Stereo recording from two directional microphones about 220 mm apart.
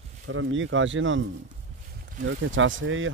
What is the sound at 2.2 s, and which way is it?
Speech, 60° right (ahead or behind).